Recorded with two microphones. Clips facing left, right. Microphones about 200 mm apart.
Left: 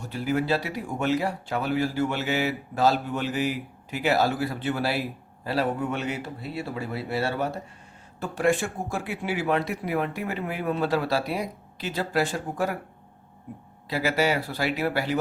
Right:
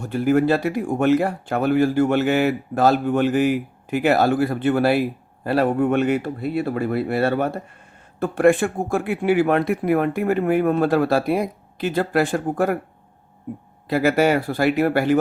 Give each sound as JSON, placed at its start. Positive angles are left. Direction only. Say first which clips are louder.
{"t": 0.0, "sound": "speech", "louder": "right 9 dB", "side_deg": -50}
{"t": 13.8, "sound": "speech", "louder": "right 7 dB", "side_deg": -50}